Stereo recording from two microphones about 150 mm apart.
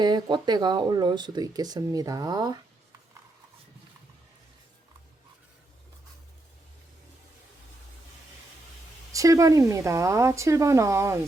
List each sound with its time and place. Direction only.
0.0 s speech: 30° right (ahead or behind)
9.1 s speech: 20° right (ahead or behind)